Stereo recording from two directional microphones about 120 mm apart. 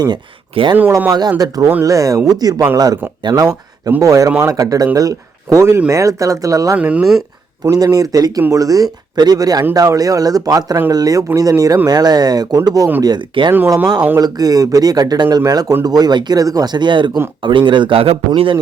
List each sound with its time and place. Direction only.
0.5 s speech: 45° right (ahead or behind)
0.8 s speech: 25° right (ahead or behind)
6.7 s speech: 10° right (ahead or behind)
7.6 s speech: 30° right (ahead or behind); by 18.2 s 50° right (ahead or behind)